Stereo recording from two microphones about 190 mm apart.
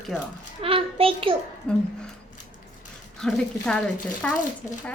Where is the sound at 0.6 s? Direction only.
30° right (ahead or behind).